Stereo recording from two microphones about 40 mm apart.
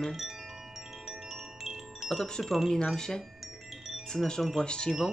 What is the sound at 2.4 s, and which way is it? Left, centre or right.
Speech, centre.